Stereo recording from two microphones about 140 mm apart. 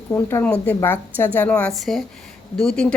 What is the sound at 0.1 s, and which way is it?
Speech, 20° left (ahead or behind).